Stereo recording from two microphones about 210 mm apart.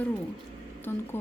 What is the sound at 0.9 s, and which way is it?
Speech, 10° left (ahead or behind).